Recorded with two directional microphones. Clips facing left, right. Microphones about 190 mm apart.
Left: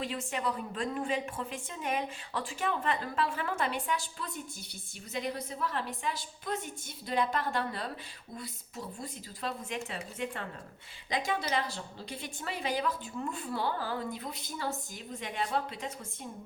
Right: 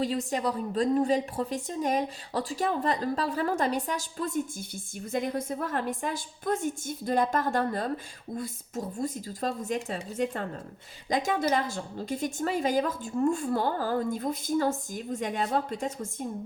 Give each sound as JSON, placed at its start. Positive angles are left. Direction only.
{"t": 0.0, "sound": "a woman's voice", "side_deg": -35}